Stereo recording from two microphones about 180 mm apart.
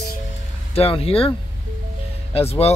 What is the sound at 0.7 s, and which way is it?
Speech, 35° left (ahead or behind).